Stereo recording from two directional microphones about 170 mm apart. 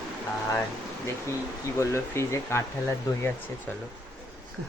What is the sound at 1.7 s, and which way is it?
Speech, 15° left (ahead or behind).